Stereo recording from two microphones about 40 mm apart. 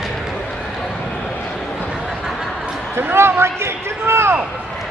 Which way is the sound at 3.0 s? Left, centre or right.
Right.